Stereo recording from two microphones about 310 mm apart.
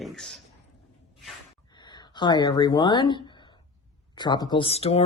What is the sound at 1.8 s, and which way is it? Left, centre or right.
Speech, centre.